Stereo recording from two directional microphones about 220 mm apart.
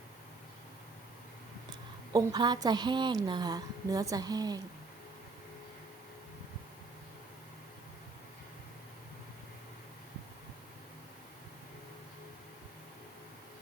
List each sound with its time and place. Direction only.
2.1 s a woman's voice: 20° right (ahead or behind)